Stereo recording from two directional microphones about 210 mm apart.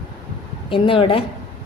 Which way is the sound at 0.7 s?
25° left (ahead or behind).